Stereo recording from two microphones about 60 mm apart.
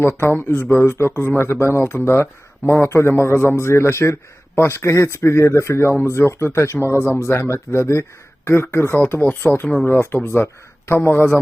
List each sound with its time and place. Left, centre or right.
0.2 s a man's voice: left